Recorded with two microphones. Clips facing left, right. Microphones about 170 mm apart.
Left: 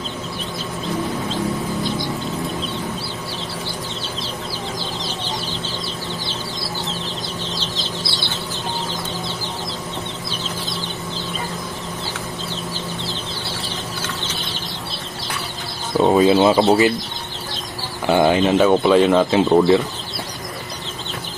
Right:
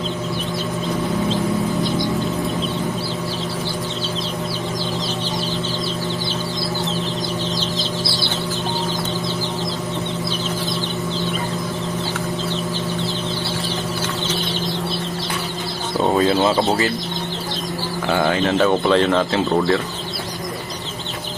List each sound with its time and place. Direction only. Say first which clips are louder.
16.0 s chicken: left 3 dB; 15° left (ahead or behind)
18.1 s speech: left 4 dB; 15° left (ahead or behind)